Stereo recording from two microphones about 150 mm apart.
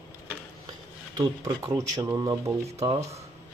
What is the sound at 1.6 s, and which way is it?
Speech, 20° right (ahead or behind).